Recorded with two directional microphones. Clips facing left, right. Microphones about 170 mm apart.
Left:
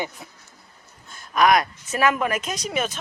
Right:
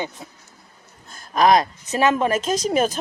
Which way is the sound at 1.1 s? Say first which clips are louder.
Right 2 dB; 35° right (ahead or behind).